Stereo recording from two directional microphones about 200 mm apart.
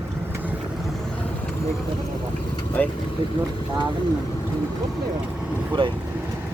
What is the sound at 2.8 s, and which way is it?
Speech, 10° left (ahead or behind).